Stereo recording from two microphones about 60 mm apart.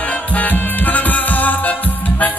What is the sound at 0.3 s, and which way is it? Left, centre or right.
Music, left.